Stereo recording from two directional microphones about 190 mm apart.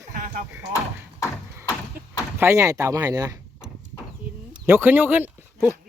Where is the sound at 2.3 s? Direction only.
15° right (ahead or behind).